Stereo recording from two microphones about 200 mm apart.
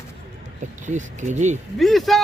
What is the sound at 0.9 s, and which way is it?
Speech, 35° right (ahead or behind).